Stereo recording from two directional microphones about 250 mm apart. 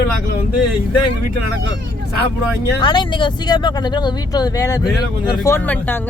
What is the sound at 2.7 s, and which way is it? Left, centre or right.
Speech, centre.